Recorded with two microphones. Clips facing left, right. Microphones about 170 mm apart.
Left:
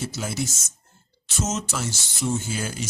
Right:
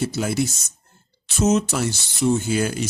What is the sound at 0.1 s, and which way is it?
Speech, 60° right (ahead or behind).